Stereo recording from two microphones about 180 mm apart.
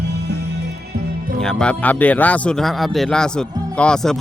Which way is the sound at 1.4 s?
5° left (ahead or behind).